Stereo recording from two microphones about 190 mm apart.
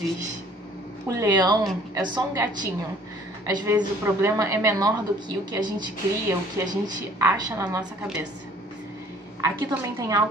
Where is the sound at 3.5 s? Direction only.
20° right (ahead or behind).